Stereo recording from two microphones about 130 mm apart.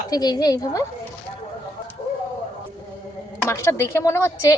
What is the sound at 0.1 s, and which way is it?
Speech, 30° left (ahead or behind).